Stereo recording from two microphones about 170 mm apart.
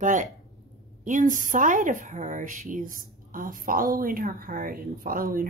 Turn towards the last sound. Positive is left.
turn(degrees=-55)  # may be behind; listen again after turning